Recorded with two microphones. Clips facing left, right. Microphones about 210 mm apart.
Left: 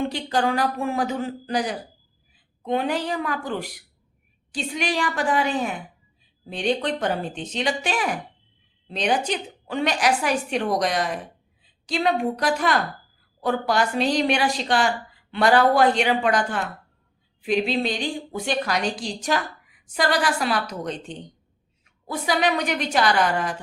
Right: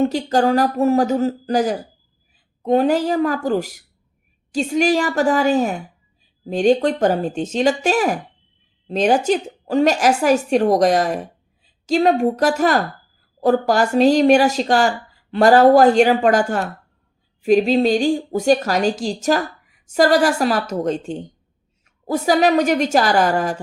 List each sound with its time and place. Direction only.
0.0 s a woman's voice: 45° right (ahead or behind)